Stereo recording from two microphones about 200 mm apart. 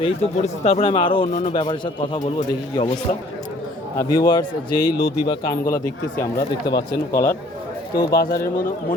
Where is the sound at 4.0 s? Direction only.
20° left (ahead or behind).